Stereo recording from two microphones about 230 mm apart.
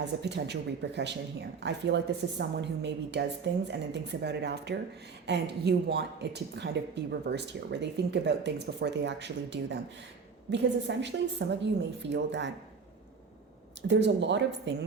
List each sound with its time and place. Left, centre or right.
0.2 s speech: right
13.8 s speech: right